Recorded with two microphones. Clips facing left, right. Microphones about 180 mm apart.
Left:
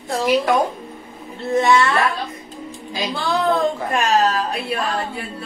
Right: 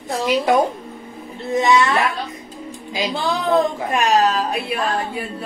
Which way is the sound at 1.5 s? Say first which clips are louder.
Even; 15° right (ahead or behind).